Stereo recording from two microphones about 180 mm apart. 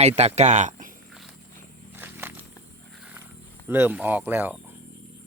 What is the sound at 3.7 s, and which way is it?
Speech, 10° right (ahead or behind).